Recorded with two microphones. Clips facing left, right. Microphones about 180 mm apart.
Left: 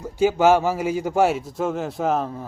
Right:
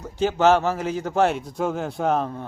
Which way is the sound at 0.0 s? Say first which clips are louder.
Left 2 dB; 10° left (ahead or behind).